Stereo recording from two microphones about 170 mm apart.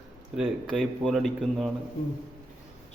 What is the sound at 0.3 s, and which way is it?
Speech, centre (ahead or behind).